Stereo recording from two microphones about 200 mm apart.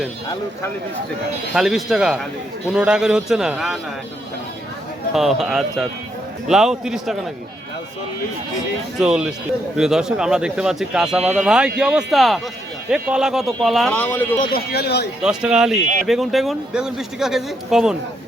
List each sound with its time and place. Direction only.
1.5 s speech: centre (ahead or behind)
5.1 s speech: centre (ahead or behind)
9.0 s speech: 5° right (ahead or behind)
14.5 s speech: 50° left (ahead or behind)
15.2 s speech: 5° right (ahead or behind)